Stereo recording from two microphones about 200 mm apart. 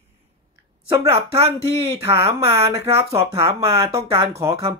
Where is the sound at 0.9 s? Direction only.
15° right (ahead or behind).